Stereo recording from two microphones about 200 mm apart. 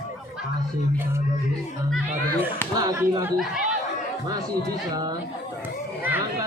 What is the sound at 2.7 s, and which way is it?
Speech, 15° right (ahead or behind).